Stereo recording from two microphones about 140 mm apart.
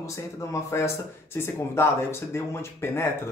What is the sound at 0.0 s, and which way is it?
Speech, 20° left (ahead or behind).